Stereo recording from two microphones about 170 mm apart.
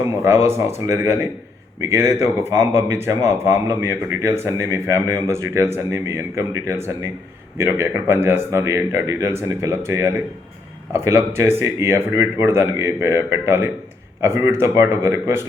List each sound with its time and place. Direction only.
0.0 s speech: 15° right (ahead or behind)